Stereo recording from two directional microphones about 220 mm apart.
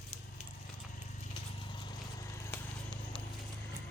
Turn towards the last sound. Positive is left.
turn(degrees=15)  # may be behind; listen again after turning